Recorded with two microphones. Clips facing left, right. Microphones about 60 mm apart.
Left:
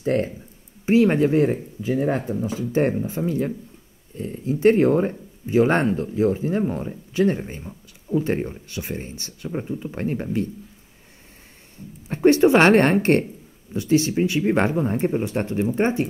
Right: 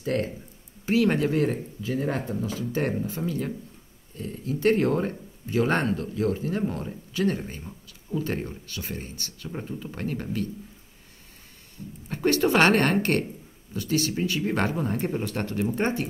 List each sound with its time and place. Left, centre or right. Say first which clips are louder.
0.0 s speech: left 5 dB; left
12.1 s speech: left 7 dB; left